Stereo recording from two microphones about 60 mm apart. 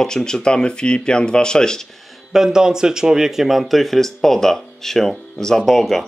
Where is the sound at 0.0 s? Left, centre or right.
Centre.